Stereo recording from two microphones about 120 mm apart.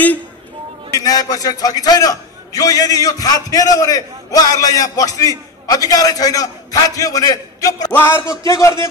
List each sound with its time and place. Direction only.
0.9 s a man's voice: 30° left (ahead or behind)